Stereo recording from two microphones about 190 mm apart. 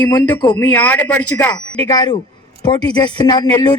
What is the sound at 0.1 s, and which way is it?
Speech, 10° left (ahead or behind).